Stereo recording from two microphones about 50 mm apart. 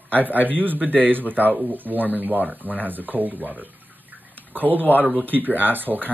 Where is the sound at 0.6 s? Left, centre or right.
Right.